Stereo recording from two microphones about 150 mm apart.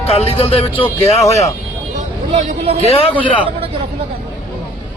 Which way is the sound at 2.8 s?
40° left (ahead or behind).